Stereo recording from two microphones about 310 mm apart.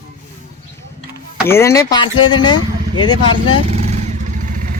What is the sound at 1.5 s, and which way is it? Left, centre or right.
Speech, centre.